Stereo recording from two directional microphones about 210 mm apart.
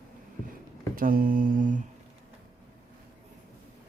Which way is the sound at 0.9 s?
40° right (ahead or behind).